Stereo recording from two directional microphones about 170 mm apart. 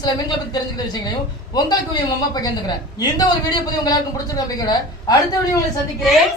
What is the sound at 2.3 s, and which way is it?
A man's voice, 25° left (ahead or behind).